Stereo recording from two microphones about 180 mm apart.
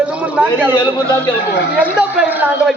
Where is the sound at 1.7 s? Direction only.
10° right (ahead or behind).